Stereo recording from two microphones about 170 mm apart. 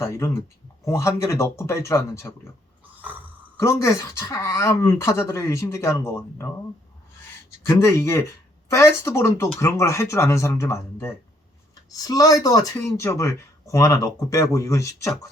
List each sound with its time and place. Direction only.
0.0 s speech: 15° left (ahead or behind)
2.9 s a sound: 10° right (ahead or behind)
3.6 s speech: 15° left (ahead or behind)
7.6 s speech: 15° left (ahead or behind)